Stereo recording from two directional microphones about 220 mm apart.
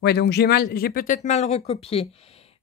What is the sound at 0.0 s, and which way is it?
Speech, 50° left (ahead or behind).